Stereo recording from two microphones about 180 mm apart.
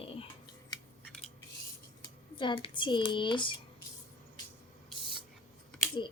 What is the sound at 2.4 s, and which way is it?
Speech, 30° left (ahead or behind).